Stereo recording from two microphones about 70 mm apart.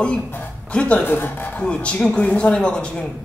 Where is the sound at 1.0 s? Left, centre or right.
Left.